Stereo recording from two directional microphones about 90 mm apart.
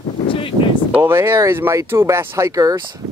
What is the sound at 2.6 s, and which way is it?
Speech, 45° right (ahead or behind).